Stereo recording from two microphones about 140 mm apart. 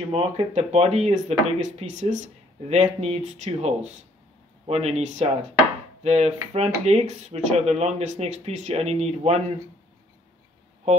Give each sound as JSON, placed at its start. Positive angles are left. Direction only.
{"t": 0.1, "sound": "speech", "side_deg": -45}